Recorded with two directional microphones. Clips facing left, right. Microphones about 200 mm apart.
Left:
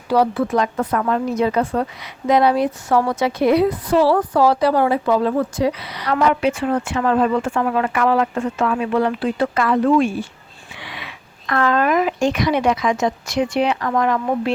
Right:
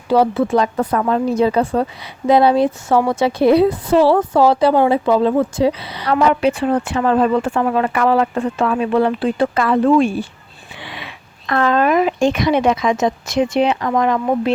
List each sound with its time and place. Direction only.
0.1 s speech: 25° right (ahead or behind)